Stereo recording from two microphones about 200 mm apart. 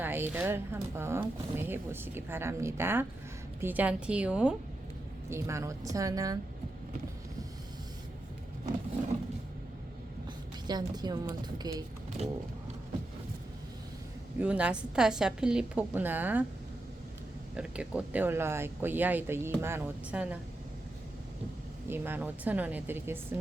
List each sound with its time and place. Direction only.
0.0 s a woman's voice: 10° right (ahead or behind)
10.7 s a woman's voice: 20° right (ahead or behind)
14.3 s speech: 5° right (ahead or behind)
17.6 s speech: 5° right (ahead or behind)
21.8 s speech: 10° right (ahead or behind)